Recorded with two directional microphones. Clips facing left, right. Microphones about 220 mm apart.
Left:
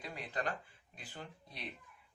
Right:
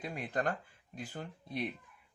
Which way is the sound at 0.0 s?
50° right (ahead or behind).